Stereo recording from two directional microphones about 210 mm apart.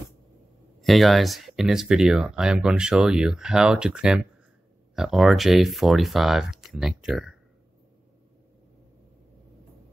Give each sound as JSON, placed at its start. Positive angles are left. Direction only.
{"t": 0.7, "sound": "speech", "side_deg": 0}